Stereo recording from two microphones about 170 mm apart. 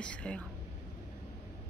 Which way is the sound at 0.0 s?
5° left (ahead or behind).